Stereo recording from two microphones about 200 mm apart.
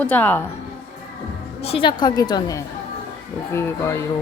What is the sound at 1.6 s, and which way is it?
A woman's voice, 25° left (ahead or behind).